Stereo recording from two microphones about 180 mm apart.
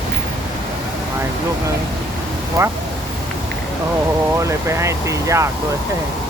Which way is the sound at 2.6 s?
20° right (ahead or behind).